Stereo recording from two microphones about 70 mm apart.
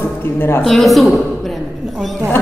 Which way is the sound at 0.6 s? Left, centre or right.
Centre.